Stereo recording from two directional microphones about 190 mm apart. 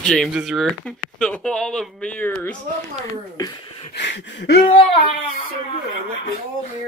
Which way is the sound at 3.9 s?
70° left (ahead or behind).